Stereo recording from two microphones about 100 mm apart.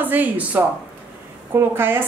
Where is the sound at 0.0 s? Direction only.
20° right (ahead or behind).